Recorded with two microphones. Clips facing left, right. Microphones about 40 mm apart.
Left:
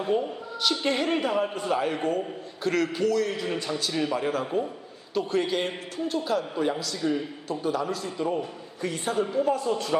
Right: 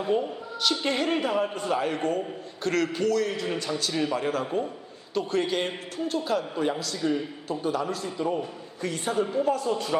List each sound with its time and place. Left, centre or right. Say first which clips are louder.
0.1 s a woman's voice: even; centre
9.4 s speech: left 2 dB; left
9.7 s a woman's voice: left 1 dB; centre